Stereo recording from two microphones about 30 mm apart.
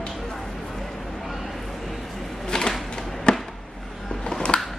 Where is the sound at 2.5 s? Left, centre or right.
Left.